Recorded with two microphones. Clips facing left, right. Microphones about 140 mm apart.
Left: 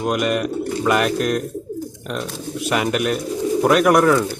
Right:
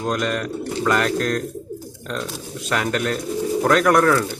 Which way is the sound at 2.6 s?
15° left (ahead or behind).